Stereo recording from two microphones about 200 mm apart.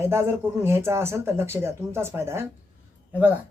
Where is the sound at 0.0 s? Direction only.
15° right (ahead or behind).